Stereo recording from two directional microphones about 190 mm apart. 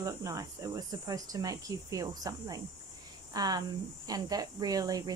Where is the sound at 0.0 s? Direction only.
20° right (ahead or behind).